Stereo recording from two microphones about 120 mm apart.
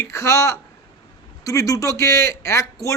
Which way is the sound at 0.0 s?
25° left (ahead or behind).